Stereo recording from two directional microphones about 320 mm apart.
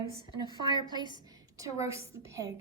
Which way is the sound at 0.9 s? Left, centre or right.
Centre.